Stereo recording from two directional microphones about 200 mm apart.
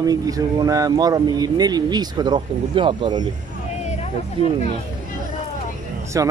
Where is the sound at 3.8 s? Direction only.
30° left (ahead or behind).